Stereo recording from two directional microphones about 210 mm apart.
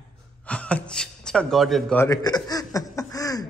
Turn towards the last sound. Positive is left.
turn(degrees=15)  # may be behind; listen again after turning